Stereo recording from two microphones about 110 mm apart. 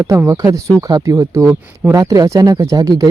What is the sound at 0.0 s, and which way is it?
Speech, 25° right (ahead or behind).